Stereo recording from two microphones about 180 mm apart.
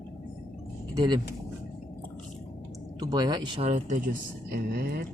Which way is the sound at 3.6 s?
45° right (ahead or behind).